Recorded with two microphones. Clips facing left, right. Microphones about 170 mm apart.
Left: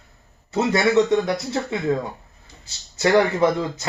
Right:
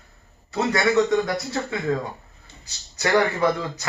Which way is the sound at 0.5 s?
25° left (ahead or behind).